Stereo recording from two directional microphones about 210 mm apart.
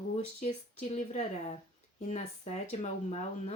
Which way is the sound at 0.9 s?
35° left (ahead or behind).